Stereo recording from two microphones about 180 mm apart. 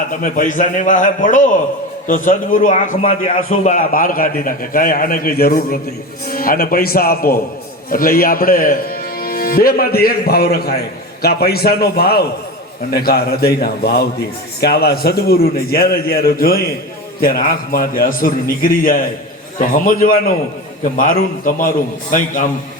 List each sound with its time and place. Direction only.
0.1 s a man's voice: 50° left (ahead or behind)
3.0 s a man's voice: 35° left (ahead or behind)